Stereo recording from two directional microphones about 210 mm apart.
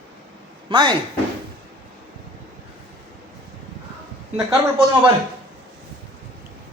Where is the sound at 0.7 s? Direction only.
20° right (ahead or behind).